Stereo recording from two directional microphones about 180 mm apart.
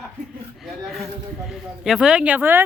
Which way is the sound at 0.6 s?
Centre (ahead or behind).